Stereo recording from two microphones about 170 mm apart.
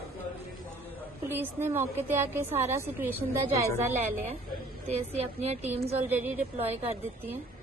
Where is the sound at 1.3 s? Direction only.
15° right (ahead or behind).